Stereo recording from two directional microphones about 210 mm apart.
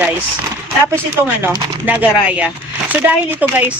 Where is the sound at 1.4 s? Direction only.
10° right (ahead or behind).